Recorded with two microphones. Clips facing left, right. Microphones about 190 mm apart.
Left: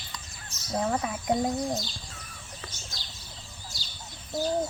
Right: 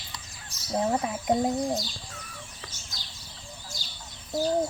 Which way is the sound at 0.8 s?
25° right (ahead or behind).